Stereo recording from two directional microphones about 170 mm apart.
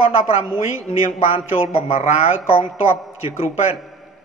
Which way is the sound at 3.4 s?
35° left (ahead or behind).